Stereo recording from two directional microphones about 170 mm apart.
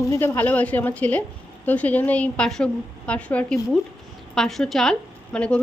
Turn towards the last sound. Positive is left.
turn(degrees=5)  # may be behind; listen again after turning